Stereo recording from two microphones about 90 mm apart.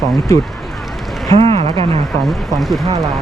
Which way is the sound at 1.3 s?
90° right.